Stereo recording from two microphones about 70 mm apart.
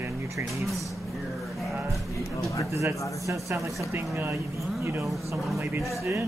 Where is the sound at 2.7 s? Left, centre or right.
Right.